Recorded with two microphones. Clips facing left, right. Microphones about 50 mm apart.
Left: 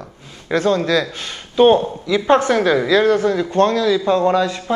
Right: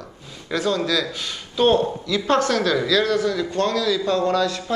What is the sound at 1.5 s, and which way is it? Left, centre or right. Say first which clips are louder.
Speech: left 5 dB; left.